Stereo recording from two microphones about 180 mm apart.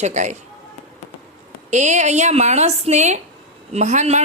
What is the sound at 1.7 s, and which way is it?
Speech, 40° right (ahead or behind).